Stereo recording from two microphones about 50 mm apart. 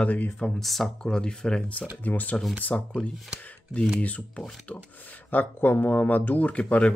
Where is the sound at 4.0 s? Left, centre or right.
Left.